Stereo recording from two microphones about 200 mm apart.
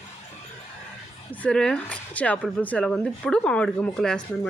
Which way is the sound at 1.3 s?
5° left (ahead or behind).